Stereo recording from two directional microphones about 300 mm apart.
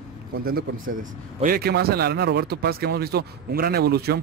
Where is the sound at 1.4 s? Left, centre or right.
Right.